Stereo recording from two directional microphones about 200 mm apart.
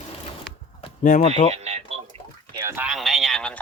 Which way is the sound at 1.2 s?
30° left (ahead or behind).